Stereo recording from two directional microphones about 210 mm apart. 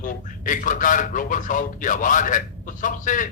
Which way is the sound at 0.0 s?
40° left (ahead or behind).